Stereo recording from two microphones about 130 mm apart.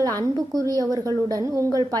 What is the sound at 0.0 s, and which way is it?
A woman's voice, 25° right (ahead or behind).